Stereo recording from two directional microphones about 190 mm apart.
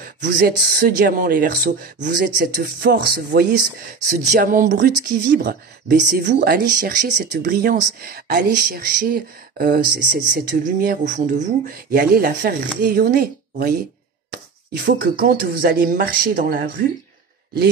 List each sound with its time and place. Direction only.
0.0 s speech: 50° right (ahead or behind)